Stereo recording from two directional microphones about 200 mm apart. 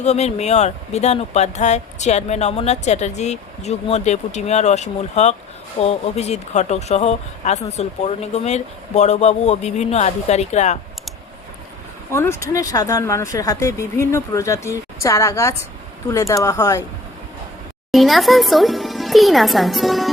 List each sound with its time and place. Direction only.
0.0 s speech: 35° left (ahead or behind)
12.1 s a woman's voice: 15° left (ahead or behind)
17.9 s speech: centre (ahead or behind)